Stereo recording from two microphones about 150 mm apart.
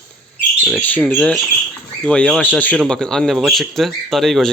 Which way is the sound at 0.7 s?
10° left (ahead or behind).